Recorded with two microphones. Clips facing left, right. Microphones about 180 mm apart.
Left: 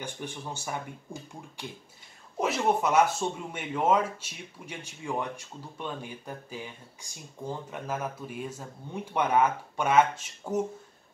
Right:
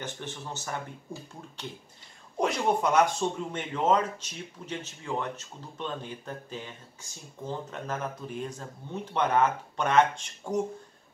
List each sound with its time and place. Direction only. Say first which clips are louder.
0.0 s speech: left 1 dB; 10° left (ahead or behind)